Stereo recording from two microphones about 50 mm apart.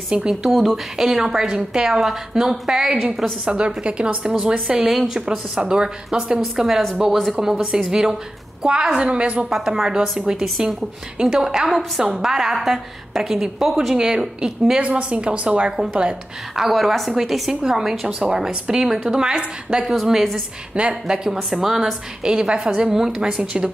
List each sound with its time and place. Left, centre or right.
0.3 s a woman's voice: centre
3.4 s a woman's voice: right
4.3 s a woman's voice: centre
6.4 s a woman's voice: centre
7.3 s a woman's voice: centre
9.5 s a woman's voice: centre
14.8 s a woman's voice: right
16.5 s a woman's voice: centre
22.2 s a woman's voice: centre